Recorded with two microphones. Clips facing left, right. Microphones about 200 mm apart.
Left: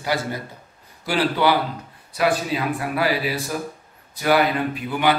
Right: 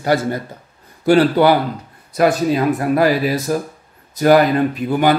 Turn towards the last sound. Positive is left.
turn(degrees=-45)  # may be behind; listen again after turning